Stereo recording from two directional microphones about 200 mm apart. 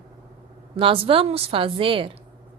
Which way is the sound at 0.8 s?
25° right (ahead or behind).